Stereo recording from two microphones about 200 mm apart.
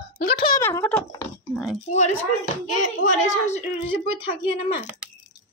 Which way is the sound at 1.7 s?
35° left (ahead or behind).